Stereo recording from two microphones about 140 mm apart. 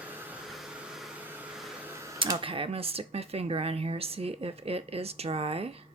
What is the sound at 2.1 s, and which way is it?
Speech, 35° right (ahead or behind).